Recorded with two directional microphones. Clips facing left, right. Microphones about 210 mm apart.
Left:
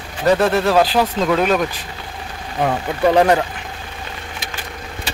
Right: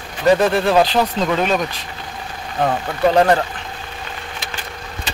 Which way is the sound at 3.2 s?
15° left (ahead or behind).